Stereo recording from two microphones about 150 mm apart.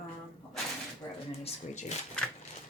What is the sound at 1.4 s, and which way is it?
Speech, 50° left (ahead or behind).